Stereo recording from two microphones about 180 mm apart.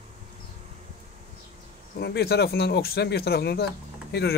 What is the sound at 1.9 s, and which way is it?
Speech, 65° left (ahead or behind).